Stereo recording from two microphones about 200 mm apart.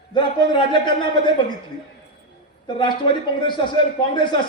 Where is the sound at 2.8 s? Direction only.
25° left (ahead or behind).